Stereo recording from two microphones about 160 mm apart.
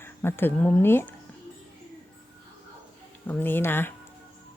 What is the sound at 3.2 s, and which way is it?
Speech, 10° left (ahead or behind).